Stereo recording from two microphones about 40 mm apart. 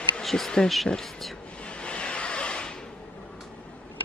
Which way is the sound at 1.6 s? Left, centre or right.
Left.